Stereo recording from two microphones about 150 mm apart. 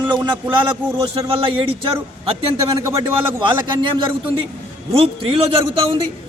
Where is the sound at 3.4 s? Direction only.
35° right (ahead or behind).